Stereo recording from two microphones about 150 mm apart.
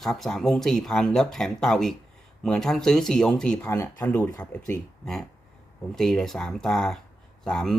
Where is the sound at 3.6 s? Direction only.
15° left (ahead or behind).